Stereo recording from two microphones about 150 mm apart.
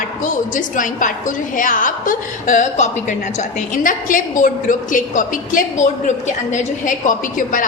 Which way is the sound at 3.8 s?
65° left (ahead or behind).